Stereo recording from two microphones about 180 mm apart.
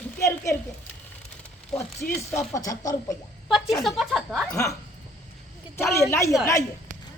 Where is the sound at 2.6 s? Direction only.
20° left (ahead or behind).